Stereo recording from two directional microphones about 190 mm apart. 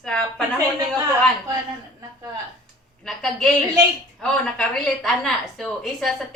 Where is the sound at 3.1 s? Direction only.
5° left (ahead or behind).